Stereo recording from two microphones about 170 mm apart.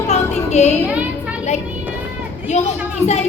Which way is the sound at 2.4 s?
45° left (ahead or behind).